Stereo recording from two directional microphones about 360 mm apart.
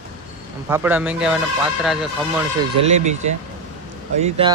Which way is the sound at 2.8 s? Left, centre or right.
Right.